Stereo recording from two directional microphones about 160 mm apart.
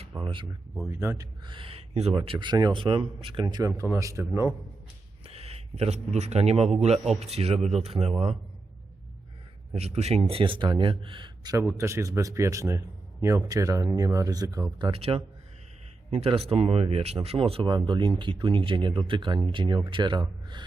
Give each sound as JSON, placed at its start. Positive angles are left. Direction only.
{"t": 0.2, "sound": "speech", "side_deg": -30}
{"t": 0.9, "sound": "speech", "side_deg": -15}
{"t": 1.5, "sound": "speech", "side_deg": -35}
{"t": 3.4, "sound": "speech", "side_deg": -20}
{"t": 5.2, "sound": "a man's voice", "side_deg": -40}
{"t": 9.7, "sound": "speech", "side_deg": -40}
{"t": 11.6, "sound": "speech", "side_deg": -15}
{"t": 14.9, "sound": "speech", "side_deg": -40}